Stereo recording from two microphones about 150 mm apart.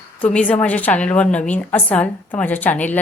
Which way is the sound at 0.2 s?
10° left (ahead or behind).